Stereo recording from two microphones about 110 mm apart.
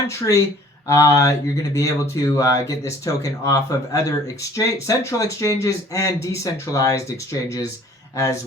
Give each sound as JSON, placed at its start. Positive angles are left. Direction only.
{"t": 0.1, "sound": "speech", "side_deg": 30}
{"t": 8.1, "sound": "speech", "side_deg": 30}